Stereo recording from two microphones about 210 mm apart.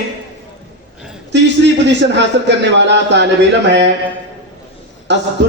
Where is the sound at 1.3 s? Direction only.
55° right (ahead or behind).